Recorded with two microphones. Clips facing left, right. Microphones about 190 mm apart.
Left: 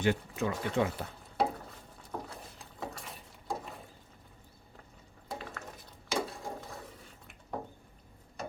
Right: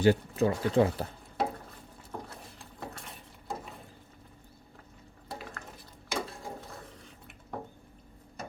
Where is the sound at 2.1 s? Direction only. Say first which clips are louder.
Left 1 dB; centre (ahead or behind).